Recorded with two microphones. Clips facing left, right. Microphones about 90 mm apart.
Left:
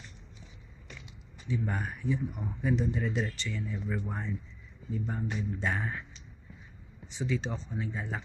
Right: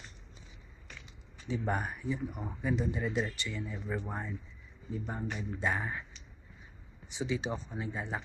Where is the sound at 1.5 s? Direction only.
25° right (ahead or behind).